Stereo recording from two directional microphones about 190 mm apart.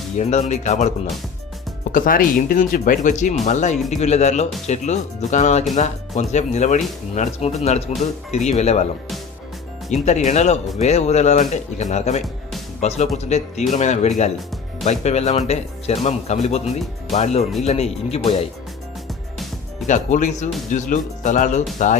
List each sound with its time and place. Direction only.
0.2 s speech: 35° left (ahead or behind)
9.9 s speech: 40° left (ahead or behind)
12.2 s music: centre (ahead or behind)
13.1 s speech: 35° left (ahead or behind)
19.9 s speech: 40° left (ahead or behind)